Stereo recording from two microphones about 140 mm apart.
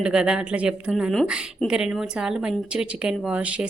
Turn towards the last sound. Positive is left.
turn(degrees=-10)  # may be behind; listen again after turning